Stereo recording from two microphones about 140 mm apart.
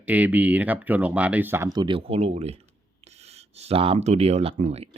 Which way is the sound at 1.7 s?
35° right (ahead or behind).